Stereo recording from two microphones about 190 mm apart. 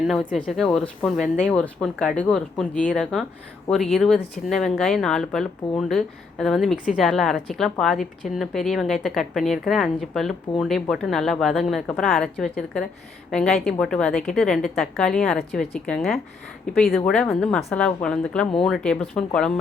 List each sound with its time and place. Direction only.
0.1 s a woman's voice: centre (ahead or behind)